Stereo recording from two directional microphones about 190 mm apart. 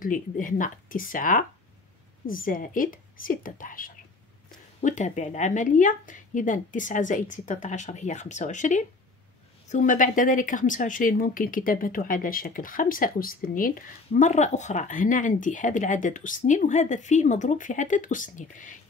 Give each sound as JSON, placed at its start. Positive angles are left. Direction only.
{"t": 0.0, "sound": "a woman's voice", "side_deg": 45}